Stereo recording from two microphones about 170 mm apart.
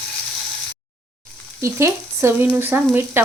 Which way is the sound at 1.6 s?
15° right (ahead or behind).